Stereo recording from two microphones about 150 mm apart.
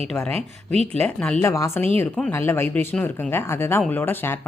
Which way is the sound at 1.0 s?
10° left (ahead or behind).